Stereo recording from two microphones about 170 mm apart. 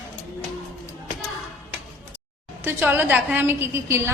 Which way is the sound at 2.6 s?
10° right (ahead or behind).